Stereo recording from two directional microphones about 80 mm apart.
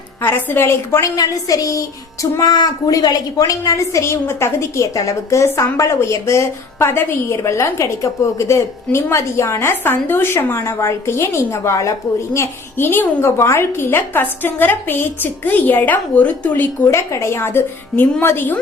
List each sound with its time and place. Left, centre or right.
0.2 s a woman's voice: left
1.1 s a woman's voice: left
2.4 s a woman's voice: left
16.8 s a woman's voice: left